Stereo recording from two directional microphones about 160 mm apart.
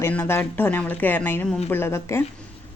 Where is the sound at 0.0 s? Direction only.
15° left (ahead or behind).